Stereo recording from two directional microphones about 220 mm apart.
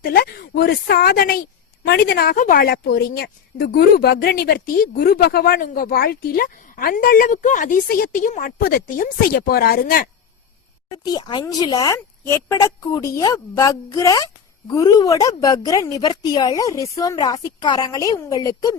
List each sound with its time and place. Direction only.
0.0 s a woman's voice: 40° left (ahead or behind)
10.9 s a woman's voice: 20° left (ahead or behind)